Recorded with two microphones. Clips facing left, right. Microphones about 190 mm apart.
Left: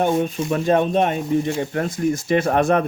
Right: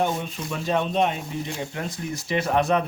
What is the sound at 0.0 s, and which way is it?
Speech, 50° left (ahead or behind).